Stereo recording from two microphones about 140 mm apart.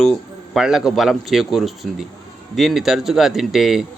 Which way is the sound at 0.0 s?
Centre (ahead or behind).